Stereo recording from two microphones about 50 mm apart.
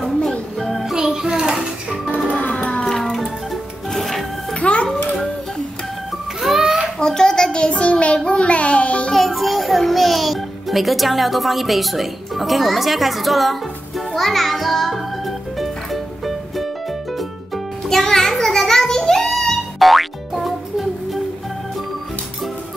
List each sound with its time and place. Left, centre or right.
0.6 s music: centre
0.9 s music: centre
2.2 s music: left
2.9 s music: centre
4.6 s a sound: left
6.4 s a sound: centre
7.0 s child singing: centre
9.1 s music: centre
17.8 s a sound: centre